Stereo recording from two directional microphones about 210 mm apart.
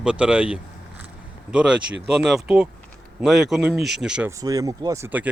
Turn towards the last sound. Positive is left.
turn(degrees=-10)  # may be behind; listen again after turning